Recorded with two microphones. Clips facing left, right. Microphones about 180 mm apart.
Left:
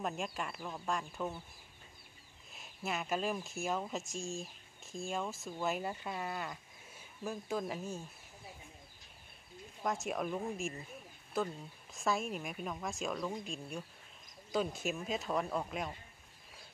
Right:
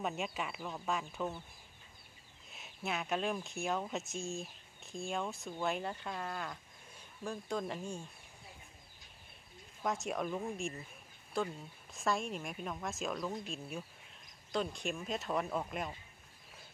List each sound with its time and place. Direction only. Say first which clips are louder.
0.0 s speech: right 1 dB; centre (ahead or behind)
2.5 s speech: even; centre (ahead or behind)
9.8 s speech: even; centre (ahead or behind)